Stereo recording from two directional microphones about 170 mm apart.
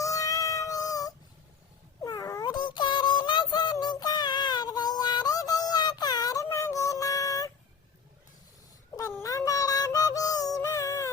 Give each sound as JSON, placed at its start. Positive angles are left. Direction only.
{"t": 0.0, "sound": "synthetic singing", "side_deg": 20}
{"t": 9.2, "sound": "music", "side_deg": 20}